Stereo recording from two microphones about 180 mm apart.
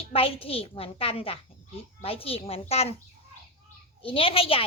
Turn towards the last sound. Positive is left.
turn(degrees=30)  # may be behind; listen again after turning